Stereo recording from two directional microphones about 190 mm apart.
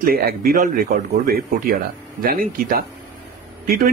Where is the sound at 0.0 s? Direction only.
50° right (ahead or behind).